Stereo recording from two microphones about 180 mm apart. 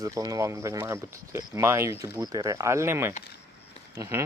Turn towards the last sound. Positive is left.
turn(degrees=-15)  # may be behind; listen again after turning